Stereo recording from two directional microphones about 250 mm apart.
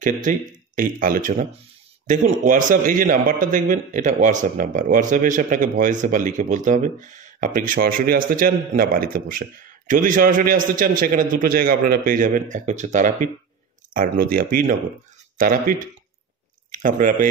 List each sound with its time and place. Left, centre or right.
0.0 s a man's voice: right